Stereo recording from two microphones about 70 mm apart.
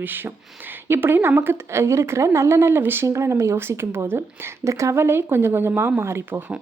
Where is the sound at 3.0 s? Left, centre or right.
Right.